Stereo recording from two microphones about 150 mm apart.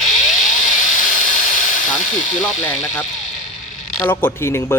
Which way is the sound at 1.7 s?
55° left (ahead or behind).